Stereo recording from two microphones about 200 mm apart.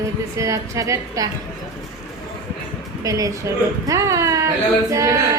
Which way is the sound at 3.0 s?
15° right (ahead or behind).